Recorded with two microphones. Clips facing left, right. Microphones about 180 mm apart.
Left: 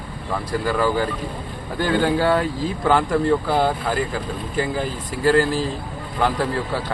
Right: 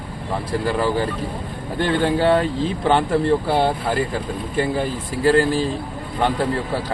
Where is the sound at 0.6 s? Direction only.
30° right (ahead or behind).